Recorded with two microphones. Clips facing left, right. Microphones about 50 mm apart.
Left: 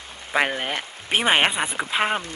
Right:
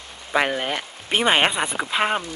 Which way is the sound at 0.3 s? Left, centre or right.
Centre.